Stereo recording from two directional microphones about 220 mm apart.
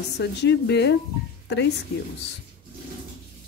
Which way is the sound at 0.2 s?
50° left (ahead or behind).